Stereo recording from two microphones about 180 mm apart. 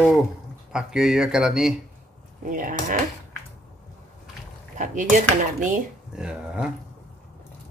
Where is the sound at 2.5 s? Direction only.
45° right (ahead or behind).